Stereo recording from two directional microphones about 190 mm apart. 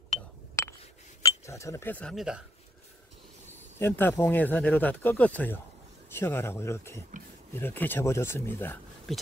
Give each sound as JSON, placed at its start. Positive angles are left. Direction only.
{"t": 0.6, "sound": "a sound", "side_deg": 15}
{"t": 1.2, "sound": "speech", "side_deg": 15}
{"t": 3.7, "sound": "speech", "side_deg": 10}